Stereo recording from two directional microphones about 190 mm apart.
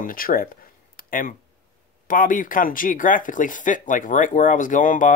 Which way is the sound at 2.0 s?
45° left (ahead or behind).